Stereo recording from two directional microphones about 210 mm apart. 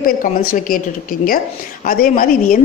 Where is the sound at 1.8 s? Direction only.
40° left (ahead or behind).